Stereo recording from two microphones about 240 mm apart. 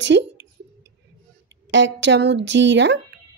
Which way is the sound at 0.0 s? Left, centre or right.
Right.